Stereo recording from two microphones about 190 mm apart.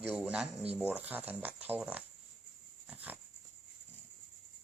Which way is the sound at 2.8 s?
10° right (ahead or behind).